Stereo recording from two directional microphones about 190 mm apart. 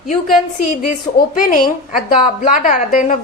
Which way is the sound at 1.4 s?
45° left (ahead or behind).